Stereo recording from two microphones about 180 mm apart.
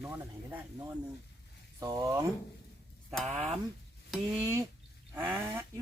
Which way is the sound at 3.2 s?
35° right (ahead or behind).